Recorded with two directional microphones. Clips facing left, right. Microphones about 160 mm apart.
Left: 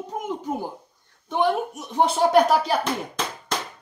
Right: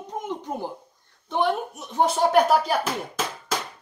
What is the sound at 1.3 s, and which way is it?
Speech, 10° left (ahead or behind).